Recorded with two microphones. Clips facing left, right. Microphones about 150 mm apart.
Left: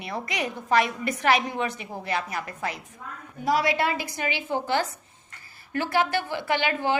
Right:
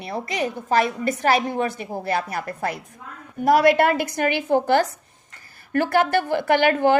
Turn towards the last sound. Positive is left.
turn(degrees=-50)  # may be behind; listen again after turning